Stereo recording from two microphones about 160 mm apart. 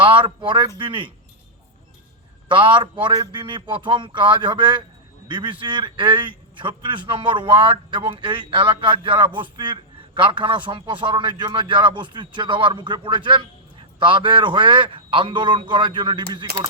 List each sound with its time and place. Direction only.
0.0 s a man's voice: 30° right (ahead or behind)
2.5 s a man's voice: 30° right (ahead or behind)